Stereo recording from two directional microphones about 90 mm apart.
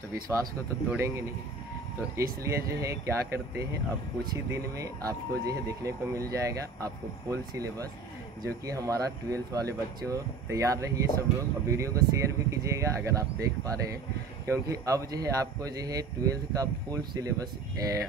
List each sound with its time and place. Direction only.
0.1 s speech: 35° right (ahead or behind)